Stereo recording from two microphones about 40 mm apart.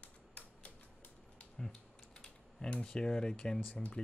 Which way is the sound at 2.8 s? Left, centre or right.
Centre.